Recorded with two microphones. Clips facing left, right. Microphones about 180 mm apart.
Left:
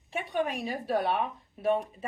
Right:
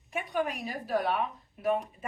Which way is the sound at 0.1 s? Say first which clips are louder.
Left 1 dB; 30° left (ahead or behind).